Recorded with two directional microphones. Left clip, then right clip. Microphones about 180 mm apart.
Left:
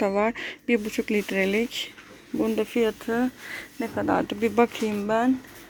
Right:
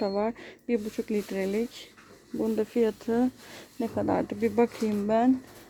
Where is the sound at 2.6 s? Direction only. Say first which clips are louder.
Even; 20° right (ahead or behind).